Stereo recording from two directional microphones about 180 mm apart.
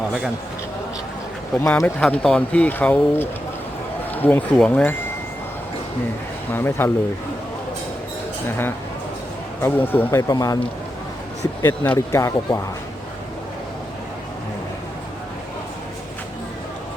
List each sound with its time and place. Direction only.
1.5 s speech: 15° left (ahead or behind)
6.5 s speech: 15° left (ahead or behind)
8.4 s speech: 10° left (ahead or behind)
11.6 s speech: 15° left (ahead or behind)